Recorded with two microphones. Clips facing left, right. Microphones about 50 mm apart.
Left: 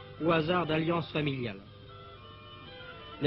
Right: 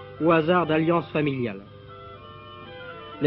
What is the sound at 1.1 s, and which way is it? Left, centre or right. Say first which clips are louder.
Speech: right 8 dB; centre.